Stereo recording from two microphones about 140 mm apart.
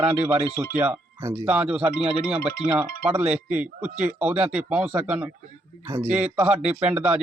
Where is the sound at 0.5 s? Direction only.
15° right (ahead or behind).